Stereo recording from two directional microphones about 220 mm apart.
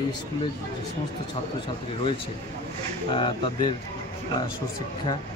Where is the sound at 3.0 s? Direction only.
25° left (ahead or behind).